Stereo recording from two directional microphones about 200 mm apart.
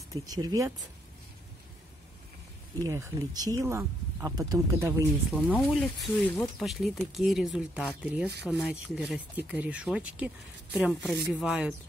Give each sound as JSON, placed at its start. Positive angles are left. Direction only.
{"t": 0.1, "sound": "speech", "side_deg": -20}
{"t": 2.8, "sound": "speech", "side_deg": -15}
{"t": 5.5, "sound": "speech", "side_deg": 0}